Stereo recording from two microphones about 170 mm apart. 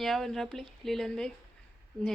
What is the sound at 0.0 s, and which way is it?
A woman's voice, centre (ahead or behind).